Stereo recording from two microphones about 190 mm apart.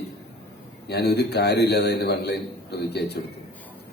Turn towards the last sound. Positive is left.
turn(degrees=60)  # may be behind; listen again after turning